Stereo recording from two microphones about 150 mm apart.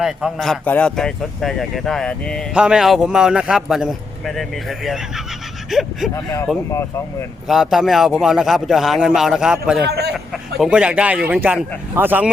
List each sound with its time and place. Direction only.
0.0 s speech: centre (ahead or behind)
2.5 s speech: 5° right (ahead or behind)
6.1 s speech: 15° left (ahead or behind)
7.4 s speech: centre (ahead or behind)
9.8 s a sound: 90° right
10.6 s speech: 5° right (ahead or behind)